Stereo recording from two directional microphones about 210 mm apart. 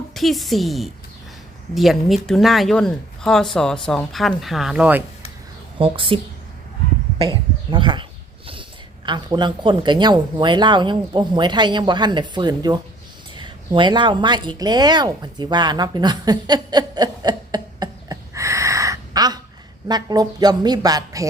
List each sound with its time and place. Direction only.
0.1 s speech: centre (ahead or behind)
5.8 s speech: 25° right (ahead or behind)
7.2 s speech: 20° right (ahead or behind)
9.0 s speech: 20° right (ahead or behind)
13.3 s a sound: 20° right (ahead or behind)
19.9 s a woman's voice: 20° right (ahead or behind)